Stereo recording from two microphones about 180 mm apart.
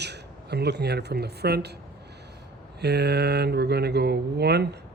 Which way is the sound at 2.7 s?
65° right (ahead or behind).